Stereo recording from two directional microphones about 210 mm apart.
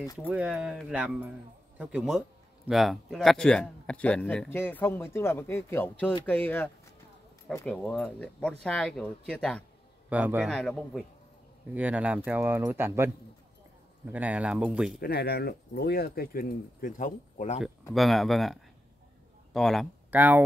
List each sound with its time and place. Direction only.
0.0 s speech: 15° left (ahead or behind)
0.3 s speech: 5° right (ahead or behind)
10.0 s speech: 5° right (ahead or behind)
14.1 s speech: 5° right (ahead or behind)
15.0 s speech: 50° left (ahead or behind)
17.9 s speech: centre (ahead or behind)